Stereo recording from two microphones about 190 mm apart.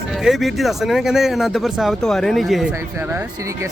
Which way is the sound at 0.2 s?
Centre (ahead or behind).